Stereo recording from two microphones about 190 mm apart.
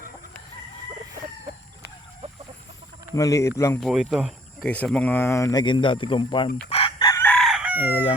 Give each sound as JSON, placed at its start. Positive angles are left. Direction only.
{"t": 3.2, "sound": "speech", "side_deg": 15}
{"t": 3.8, "sound": "speech", "side_deg": 0}
{"t": 6.7, "sound": "chicken", "side_deg": 30}